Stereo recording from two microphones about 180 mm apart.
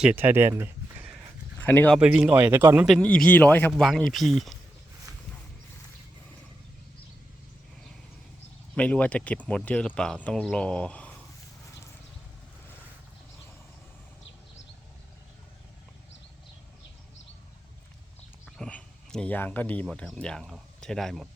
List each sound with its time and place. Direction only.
0.0 s speech: 10° right (ahead or behind)
1.5 s speech: 10° left (ahead or behind)
2.0 s a man's voice: 5° right (ahead or behind)
8.7 s speech: 5° left (ahead or behind)
18.4 s speech: 5° left (ahead or behind)